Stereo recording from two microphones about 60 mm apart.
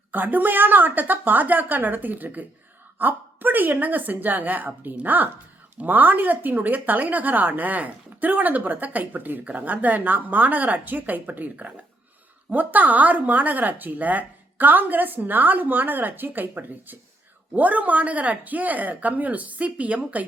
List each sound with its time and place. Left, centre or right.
0.1 s a woman's voice: right